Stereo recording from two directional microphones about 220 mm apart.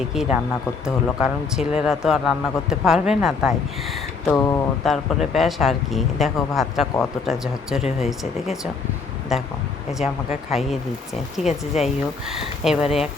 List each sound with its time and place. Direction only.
0.1 s speech: centre (ahead or behind)
4.4 s speech: 15° left (ahead or behind)
4.9 s speech: centre (ahead or behind)
10.0 s speech: 30° left (ahead or behind)
10.5 s speech: centre (ahead or behind)
11.8 s speech: centre (ahead or behind)